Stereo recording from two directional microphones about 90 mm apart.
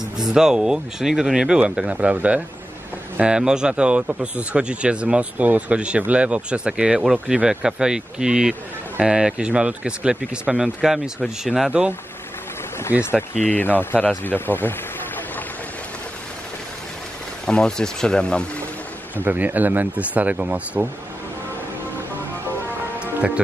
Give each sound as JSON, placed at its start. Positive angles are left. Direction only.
{"t": 0.2, "sound": "speech", "side_deg": -5}
{"t": 12.9, "sound": "speech", "side_deg": -15}
{"t": 13.5, "sound": "speech", "side_deg": 20}
{"t": 17.5, "sound": "speech", "side_deg": 10}
{"t": 19.2, "sound": "speech", "side_deg": -20}